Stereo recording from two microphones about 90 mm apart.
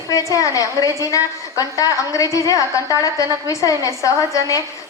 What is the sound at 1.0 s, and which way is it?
A woman's voice, 40° left (ahead or behind).